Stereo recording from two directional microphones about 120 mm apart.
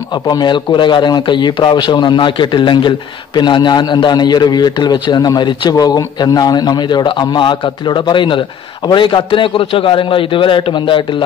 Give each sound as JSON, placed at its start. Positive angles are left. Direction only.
{"t": 0.3, "sound": "a man's voice", "side_deg": 35}